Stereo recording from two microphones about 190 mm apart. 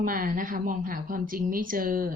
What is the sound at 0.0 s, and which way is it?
A woman's voice, 45° right (ahead or behind).